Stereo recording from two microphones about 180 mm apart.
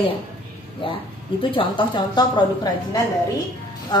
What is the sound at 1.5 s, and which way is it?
Speech, 25° left (ahead or behind).